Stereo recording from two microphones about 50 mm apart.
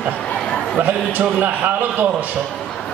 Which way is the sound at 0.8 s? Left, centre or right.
Right.